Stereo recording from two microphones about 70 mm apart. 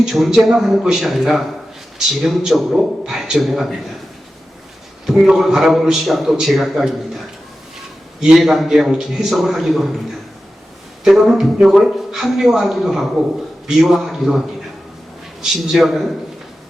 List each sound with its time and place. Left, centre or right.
0.0 s a man's voice: centre
5.0 s a man's voice: centre
8.2 s a man's voice: centre
11.0 s a man's voice: centre